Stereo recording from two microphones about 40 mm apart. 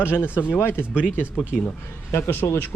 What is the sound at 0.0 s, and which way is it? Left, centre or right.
Speech, left.